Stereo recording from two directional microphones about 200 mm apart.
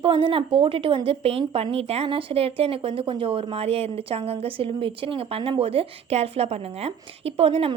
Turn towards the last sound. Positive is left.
turn(degrees=-30)  # may be behind; listen again after turning